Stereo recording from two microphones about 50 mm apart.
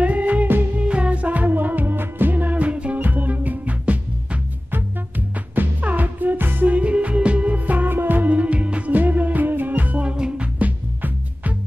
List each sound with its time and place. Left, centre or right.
0.0 s music: right
0.7 s music: right
4.6 s music: right
10.1 s music: centre
10.4 s music: right